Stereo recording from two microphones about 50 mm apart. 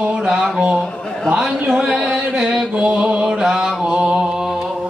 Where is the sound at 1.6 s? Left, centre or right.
Centre.